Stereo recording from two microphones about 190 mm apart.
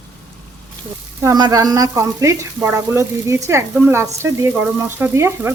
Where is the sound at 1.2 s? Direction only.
20° right (ahead or behind).